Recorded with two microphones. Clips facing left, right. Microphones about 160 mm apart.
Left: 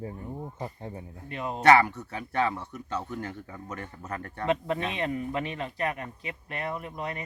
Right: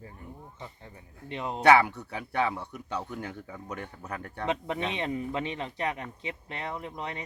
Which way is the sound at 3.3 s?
5° right (ahead or behind).